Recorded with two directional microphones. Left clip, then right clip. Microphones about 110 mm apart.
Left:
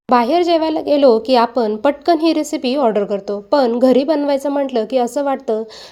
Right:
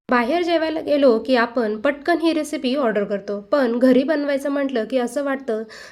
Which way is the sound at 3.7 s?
30° right (ahead or behind).